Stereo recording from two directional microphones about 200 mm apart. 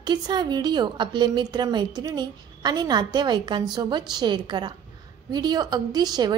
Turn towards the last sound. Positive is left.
turn(degrees=-20)  # may be behind; listen again after turning